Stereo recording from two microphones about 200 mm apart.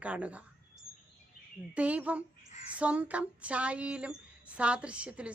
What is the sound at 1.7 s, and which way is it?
A woman's voice, 5° right (ahead or behind).